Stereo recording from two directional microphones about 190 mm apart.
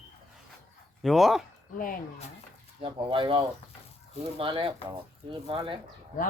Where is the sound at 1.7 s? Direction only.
45° left (ahead or behind).